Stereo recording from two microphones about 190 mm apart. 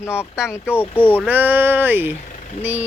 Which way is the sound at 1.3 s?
10° right (ahead or behind).